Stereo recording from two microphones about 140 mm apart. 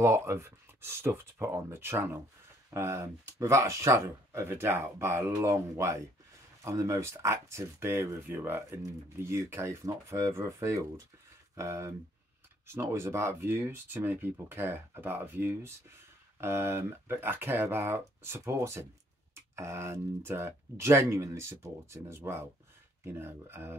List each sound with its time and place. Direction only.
0.0 s speech: 20° right (ahead or behind)